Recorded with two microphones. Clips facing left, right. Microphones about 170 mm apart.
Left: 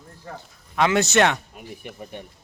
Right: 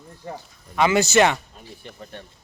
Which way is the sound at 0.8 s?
Centre (ahead or behind).